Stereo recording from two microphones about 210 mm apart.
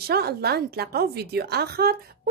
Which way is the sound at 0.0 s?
50° right (ahead or behind).